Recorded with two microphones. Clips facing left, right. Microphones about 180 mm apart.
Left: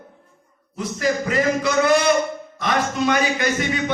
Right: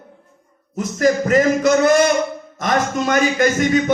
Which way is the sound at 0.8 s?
45° right (ahead or behind).